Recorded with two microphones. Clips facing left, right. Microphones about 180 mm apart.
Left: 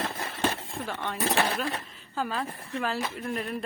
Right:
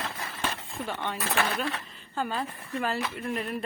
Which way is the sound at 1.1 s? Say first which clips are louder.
Left 4 dB; 25° left (ahead or behind).